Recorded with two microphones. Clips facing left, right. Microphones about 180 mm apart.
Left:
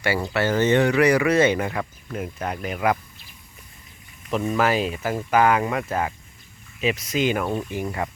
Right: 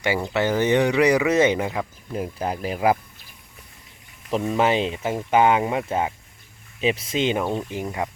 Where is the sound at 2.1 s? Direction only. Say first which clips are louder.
Right 2 dB; 30° right (ahead or behind).